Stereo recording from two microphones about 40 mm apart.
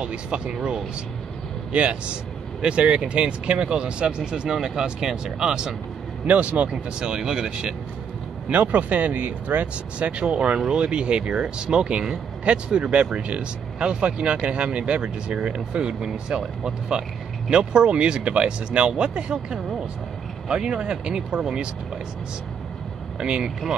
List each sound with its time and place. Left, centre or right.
0.0 s speech: right
1.7 s a man's voice: right
6.2 s speech: right
7.0 s speech: centre
8.5 s speech: right; by 22.0 s centre
23.1 s speech: right